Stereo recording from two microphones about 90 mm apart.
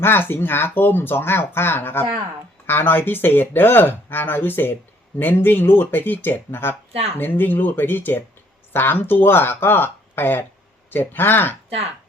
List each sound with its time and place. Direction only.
0.0 s speech: 25° left (ahead or behind)